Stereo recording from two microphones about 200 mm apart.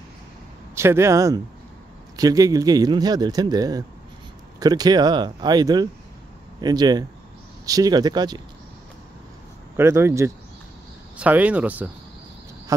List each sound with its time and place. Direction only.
0.7 s speech: 15° right (ahead or behind)
9.8 s speech: 15° right (ahead or behind)